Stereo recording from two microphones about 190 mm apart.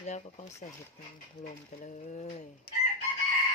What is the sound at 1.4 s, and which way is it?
Speech, 40° left (ahead or behind).